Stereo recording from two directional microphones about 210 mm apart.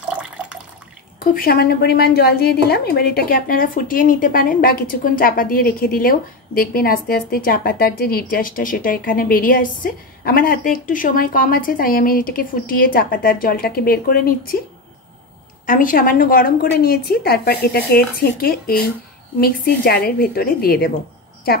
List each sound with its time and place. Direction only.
0.2 s water: 5° right (ahead or behind)
1.2 s a woman's voice: 45° left (ahead or behind)
15.6 s a woman's voice: 40° left (ahead or behind)